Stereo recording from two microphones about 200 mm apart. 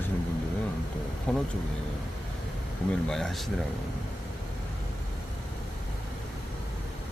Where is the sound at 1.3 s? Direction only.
5° left (ahead or behind).